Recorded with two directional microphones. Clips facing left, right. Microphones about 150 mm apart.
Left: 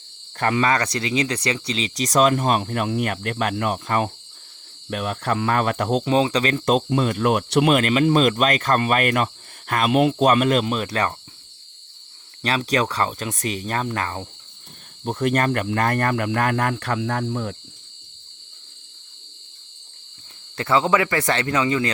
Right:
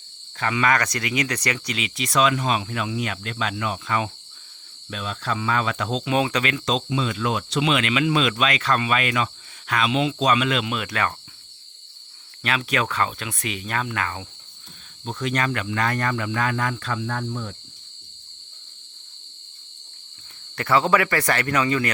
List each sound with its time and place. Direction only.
0.3 s speech: 50° left (ahead or behind)
0.6 s speech: 30° left (ahead or behind); by 6.1 s 55° left (ahead or behind)
6.1 s speech: 30° left (ahead or behind)
6.7 s speech: 55° left (ahead or behind); by 11.1 s 35° left (ahead or behind)
12.4 s speech: 35° left (ahead or behind)
15.2 s speech: 50° left (ahead or behind)
20.6 s speech: 20° left (ahead or behind)